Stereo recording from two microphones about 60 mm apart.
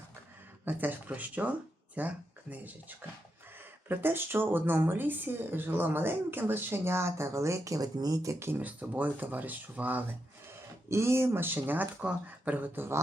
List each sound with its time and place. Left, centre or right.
0.6 s speech: right
3.8 s speech: right
8.4 s speech: right
10.8 s speech: right